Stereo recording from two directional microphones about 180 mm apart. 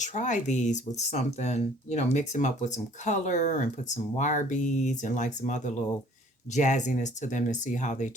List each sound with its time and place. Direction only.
0.0 s speech: 45° left (ahead or behind)